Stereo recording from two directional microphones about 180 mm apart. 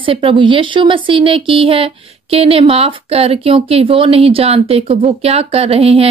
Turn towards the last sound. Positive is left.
turn(degrees=-35)  # may be behind; listen again after turning